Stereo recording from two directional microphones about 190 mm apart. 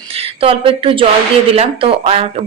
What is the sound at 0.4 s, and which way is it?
Speech, 30° right (ahead or behind).